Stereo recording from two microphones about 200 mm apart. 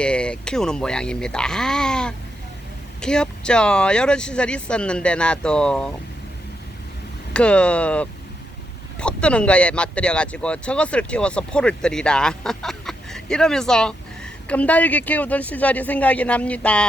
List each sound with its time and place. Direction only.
0.0 s speech: 5° left (ahead or behind)
7.3 s speech: 5° left (ahead or behind)